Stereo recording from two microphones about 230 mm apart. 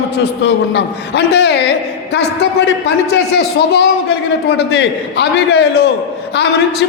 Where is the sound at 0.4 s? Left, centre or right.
Left.